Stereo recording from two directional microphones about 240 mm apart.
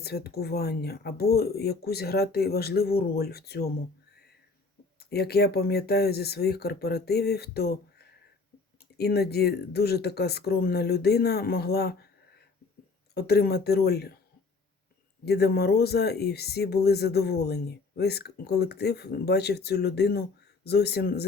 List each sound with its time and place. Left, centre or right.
0.0 s speech: left
4.9 s speech: left
13.1 s speech: left
15.2 s speech: left